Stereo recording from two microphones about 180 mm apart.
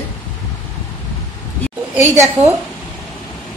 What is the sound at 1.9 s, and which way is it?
Speech, 15° right (ahead or behind).